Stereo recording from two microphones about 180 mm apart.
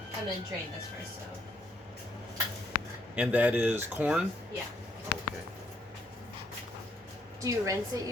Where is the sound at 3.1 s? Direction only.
10° right (ahead or behind).